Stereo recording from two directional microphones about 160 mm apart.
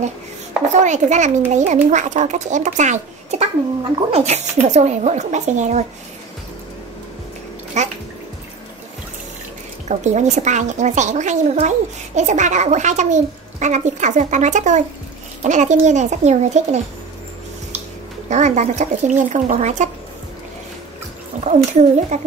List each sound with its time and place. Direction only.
0.7 s a child's voice: 50° right (ahead or behind)
7.8 s bathtub: 45° right (ahead or behind)
9.8 s a child's voice: 45° right (ahead or behind)
18.3 s a child's voice: 45° right (ahead or behind)
21.5 s a child's voice: 50° right (ahead or behind)